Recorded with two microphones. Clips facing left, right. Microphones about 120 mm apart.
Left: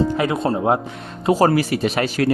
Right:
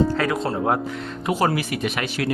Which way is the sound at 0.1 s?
20° left (ahead or behind).